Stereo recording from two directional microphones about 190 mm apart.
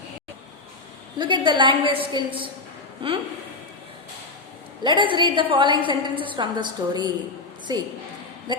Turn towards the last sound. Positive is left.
turn(degrees=-20)  # may be behind; listen again after turning